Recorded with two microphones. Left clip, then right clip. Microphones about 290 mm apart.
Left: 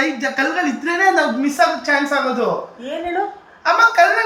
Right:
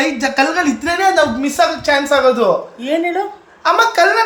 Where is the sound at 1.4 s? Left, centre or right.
Centre.